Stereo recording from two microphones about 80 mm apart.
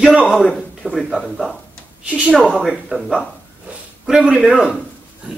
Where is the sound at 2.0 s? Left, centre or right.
Centre.